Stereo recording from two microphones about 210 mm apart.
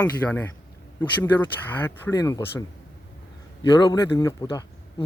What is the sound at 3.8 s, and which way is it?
Speech, 15° left (ahead or behind).